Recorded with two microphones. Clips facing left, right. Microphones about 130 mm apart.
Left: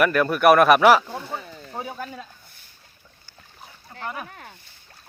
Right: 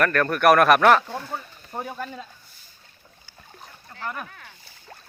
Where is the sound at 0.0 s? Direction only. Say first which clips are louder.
Left 2 dB; 10° left (ahead or behind).